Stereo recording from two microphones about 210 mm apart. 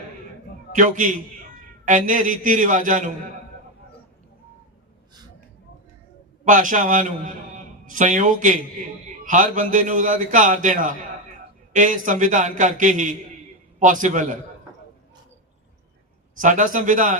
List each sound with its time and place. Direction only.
0.7 s a man's voice: 40° right (ahead or behind)
6.4 s a man's voice: 40° right (ahead or behind)
16.4 s a man's voice: 40° right (ahead or behind)